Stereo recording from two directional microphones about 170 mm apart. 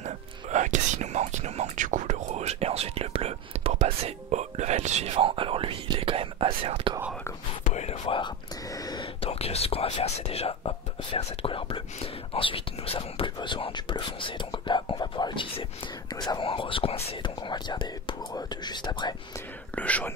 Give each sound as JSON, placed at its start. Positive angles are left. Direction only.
{"t": 0.0, "sound": "whispering", "side_deg": -45}
{"t": 7.6, "sound": "whispering", "side_deg": 40}
{"t": 8.7, "sound": "whispering", "side_deg": 20}
{"t": 9.2, "sound": "whispering", "side_deg": 35}
{"t": 19.7, "sound": "whispering", "side_deg": 10}